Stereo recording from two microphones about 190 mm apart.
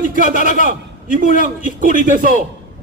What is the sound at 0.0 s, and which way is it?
A man's voice, 45° right (ahead or behind).